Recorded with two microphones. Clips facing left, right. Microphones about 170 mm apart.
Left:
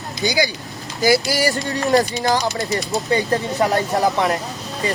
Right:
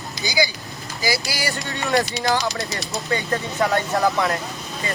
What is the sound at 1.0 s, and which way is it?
Speech, 50° left (ahead or behind).